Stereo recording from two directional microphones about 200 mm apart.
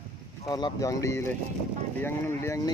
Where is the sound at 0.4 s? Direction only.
20° left (ahead or behind).